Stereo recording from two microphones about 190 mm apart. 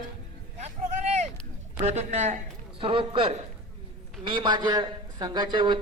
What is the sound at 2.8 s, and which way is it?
A man's voice, 25° right (ahead or behind).